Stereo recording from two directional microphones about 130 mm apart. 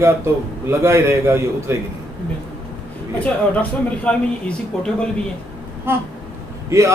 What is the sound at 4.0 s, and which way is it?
Speech, 10° left (ahead or behind).